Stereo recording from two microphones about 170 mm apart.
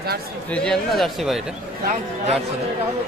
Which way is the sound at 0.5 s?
5° left (ahead or behind).